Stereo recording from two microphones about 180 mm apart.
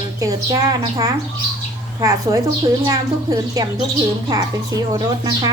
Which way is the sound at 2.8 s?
20° right (ahead or behind).